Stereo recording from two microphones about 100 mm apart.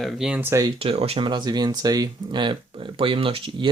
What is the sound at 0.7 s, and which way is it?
Speech, 80° right.